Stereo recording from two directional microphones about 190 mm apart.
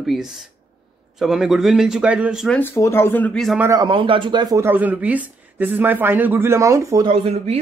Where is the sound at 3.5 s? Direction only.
15° right (ahead or behind).